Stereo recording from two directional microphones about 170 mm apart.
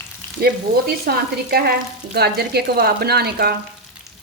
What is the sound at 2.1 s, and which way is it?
Speech, 70° right (ahead or behind).